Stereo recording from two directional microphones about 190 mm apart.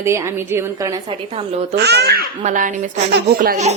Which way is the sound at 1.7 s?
60° right (ahead or behind).